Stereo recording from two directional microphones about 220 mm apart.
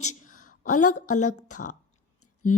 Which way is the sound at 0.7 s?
90° left.